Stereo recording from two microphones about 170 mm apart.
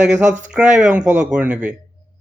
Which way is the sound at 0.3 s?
45° right (ahead or behind).